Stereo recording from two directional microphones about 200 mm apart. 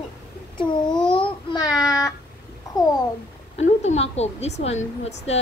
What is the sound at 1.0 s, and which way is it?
Babbling, 25° left (ahead or behind).